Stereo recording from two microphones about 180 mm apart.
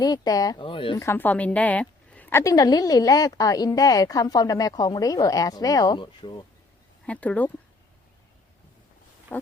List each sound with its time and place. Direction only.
0.0 s a woman's voice: 20° left (ahead or behind)
0.9 s a woman's voice: 15° left (ahead or behind)
7.0 s speech: 5° left (ahead or behind)
9.3 s a sound: 10° left (ahead or behind)